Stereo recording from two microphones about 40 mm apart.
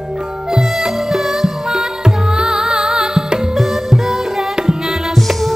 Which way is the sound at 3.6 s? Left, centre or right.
Centre.